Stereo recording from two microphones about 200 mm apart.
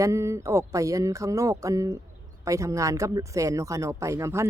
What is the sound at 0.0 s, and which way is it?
A woman's voice, 15° right (ahead or behind).